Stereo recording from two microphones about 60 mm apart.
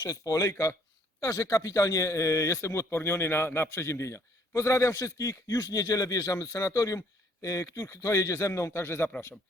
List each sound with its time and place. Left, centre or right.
0.0 s speech: left
0.5 s speech: left
1.2 s a man's voice: left